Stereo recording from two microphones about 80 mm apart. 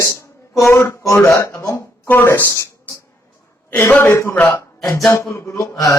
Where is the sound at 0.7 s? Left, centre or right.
Left.